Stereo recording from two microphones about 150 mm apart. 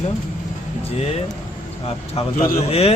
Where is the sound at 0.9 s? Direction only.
45° left (ahead or behind).